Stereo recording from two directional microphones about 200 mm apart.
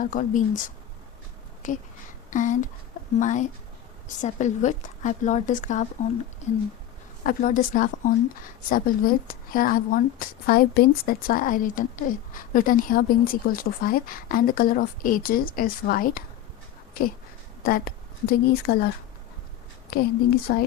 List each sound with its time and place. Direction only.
0.0 s speech: 40° left (ahead or behind)
1.6 s speech: 40° left (ahead or behind)
7.3 s speech: 40° left (ahead or behind)
17.6 s a woman's voice: 45° left (ahead or behind)
19.9 s speech: 50° left (ahead or behind)